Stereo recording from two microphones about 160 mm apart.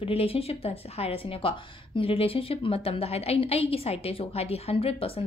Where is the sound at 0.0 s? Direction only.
35° left (ahead or behind).